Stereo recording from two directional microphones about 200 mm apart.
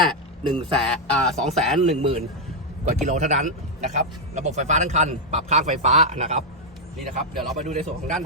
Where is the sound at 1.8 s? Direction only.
30° right (ahead or behind).